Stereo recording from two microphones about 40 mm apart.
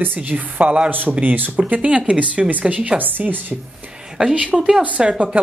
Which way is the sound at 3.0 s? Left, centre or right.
Right.